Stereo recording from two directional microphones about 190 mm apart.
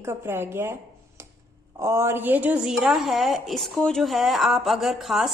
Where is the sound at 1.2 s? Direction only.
15° right (ahead or behind).